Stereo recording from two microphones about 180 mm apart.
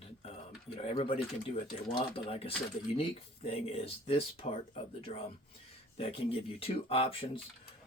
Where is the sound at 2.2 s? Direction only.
30° left (ahead or behind).